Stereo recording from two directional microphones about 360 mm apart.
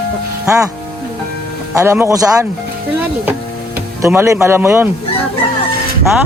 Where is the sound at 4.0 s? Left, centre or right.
Centre.